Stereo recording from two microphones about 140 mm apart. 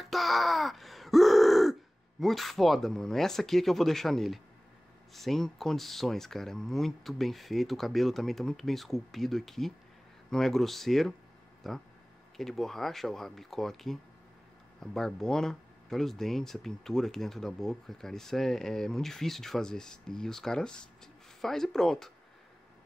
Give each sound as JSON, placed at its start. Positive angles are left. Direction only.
{"t": 0.0, "sound": "throat clearing", "side_deg": 0}
{"t": 5.1, "sound": "speech", "side_deg": 0}